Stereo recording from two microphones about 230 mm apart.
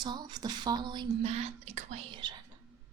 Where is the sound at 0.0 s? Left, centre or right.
Centre.